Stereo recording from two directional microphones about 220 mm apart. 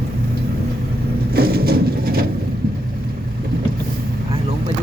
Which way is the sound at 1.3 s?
45° right (ahead or behind).